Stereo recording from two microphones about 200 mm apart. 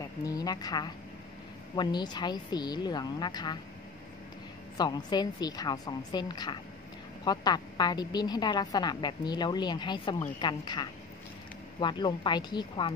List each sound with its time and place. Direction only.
0.0 s a woman's voice: 20° left (ahead or behind)
4.7 s a woman's voice: 20° left (ahead or behind)